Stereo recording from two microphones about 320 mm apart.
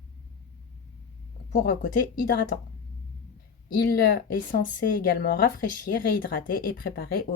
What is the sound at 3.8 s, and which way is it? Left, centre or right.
Speech, left.